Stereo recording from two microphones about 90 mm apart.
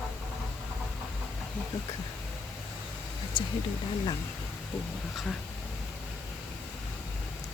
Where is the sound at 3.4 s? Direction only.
60° left (ahead or behind).